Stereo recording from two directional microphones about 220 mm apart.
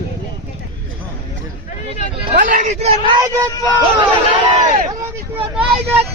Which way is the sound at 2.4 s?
35° right (ahead or behind).